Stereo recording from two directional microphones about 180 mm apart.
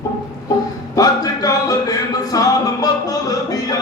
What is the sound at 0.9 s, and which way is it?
Music, 20° left (ahead or behind).